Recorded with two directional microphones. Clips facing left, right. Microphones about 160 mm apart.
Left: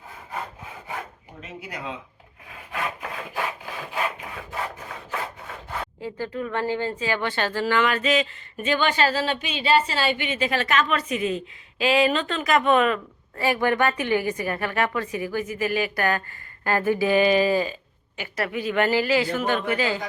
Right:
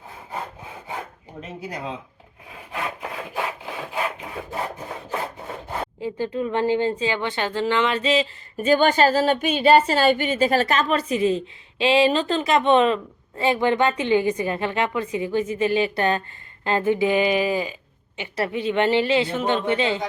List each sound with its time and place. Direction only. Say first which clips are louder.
1.4 s speech: right 4 dB; 35° right (ahead or behind)
2.7 s wood: right 1 dB; 15° right (ahead or behind)
6.0 s a woman's voice: right 5 dB; 20° right (ahead or behind)
18.2 s a woman's voice: right 2 dB; 30° right (ahead or behind)